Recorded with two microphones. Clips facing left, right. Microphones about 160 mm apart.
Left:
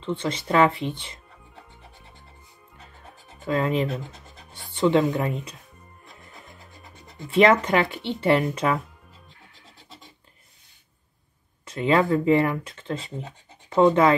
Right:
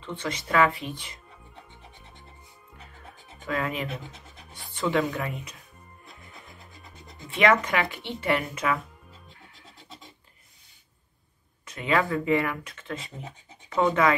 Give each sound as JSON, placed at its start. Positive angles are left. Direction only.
{"t": 0.0, "sound": "speech", "side_deg": 30}
{"t": 3.3, "sound": "speech", "side_deg": 30}
{"t": 3.9, "sound": "pant", "side_deg": 0}
{"t": 4.9, "sound": "speech", "side_deg": 20}
{"t": 5.3, "sound": "speech", "side_deg": 30}
{"t": 7.3, "sound": "speech", "side_deg": 35}
{"t": 11.6, "sound": "speech", "side_deg": 30}